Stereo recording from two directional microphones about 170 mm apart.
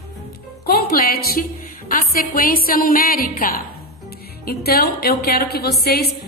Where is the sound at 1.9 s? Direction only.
55° left (ahead or behind).